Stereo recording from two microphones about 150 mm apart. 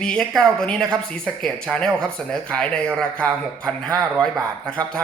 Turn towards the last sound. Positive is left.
turn(degrees=5)  # may be behind; listen again after turning